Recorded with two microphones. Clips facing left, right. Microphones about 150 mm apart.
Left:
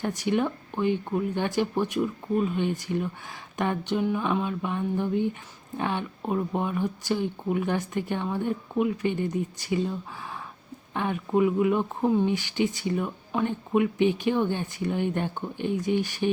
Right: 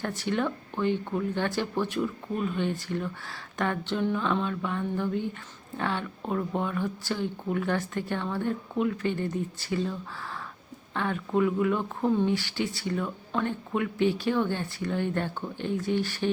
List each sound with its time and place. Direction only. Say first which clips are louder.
0.0 s speech: left 3 dB; 15° left (ahead or behind)